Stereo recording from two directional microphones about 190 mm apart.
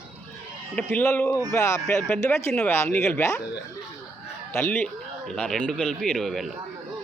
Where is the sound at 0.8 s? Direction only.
10° left (ahead or behind).